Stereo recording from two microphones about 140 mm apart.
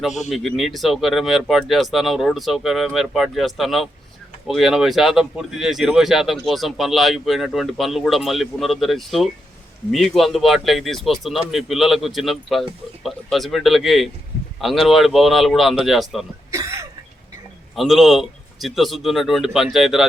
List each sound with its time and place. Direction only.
0.3 s speech: centre (ahead or behind)
16.5 s throat clearing: 20° right (ahead or behind)
17.7 s speech: centre (ahead or behind)